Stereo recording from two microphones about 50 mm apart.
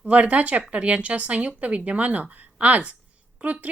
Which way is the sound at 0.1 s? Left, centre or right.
Right.